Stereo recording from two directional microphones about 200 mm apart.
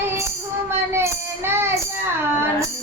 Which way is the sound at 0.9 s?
10° right (ahead or behind).